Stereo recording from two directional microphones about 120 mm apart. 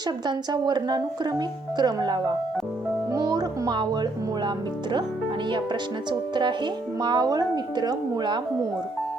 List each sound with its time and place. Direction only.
0.3 s speech: 35° right (ahead or behind)
6.1 s speech: 40° right (ahead or behind)